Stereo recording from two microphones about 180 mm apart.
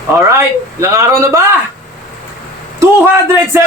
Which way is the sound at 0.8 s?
15° right (ahead or behind).